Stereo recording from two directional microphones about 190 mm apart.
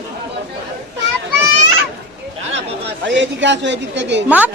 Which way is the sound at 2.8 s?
70° right (ahead or behind).